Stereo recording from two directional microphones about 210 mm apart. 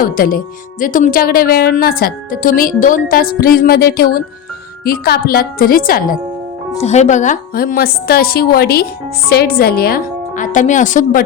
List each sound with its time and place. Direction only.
0.0 s a woman's voice: 40° left (ahead or behind)
6.8 s a woman's voice: 35° left (ahead or behind)